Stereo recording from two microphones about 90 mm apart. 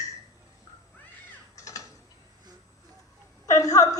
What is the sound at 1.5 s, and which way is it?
Crow, 35° left (ahead or behind).